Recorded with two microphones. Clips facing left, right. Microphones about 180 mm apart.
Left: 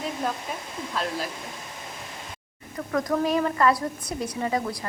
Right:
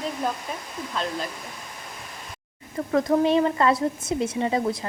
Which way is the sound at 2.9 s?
25° right (ahead or behind).